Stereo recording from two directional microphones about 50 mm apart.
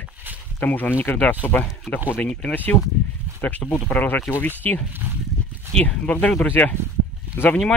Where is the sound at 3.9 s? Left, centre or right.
Left.